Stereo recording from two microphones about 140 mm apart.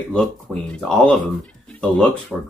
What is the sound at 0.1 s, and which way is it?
Speech, 5° left (ahead or behind).